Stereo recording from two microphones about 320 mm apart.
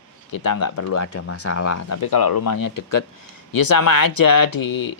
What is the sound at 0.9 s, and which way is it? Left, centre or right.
Speech, left.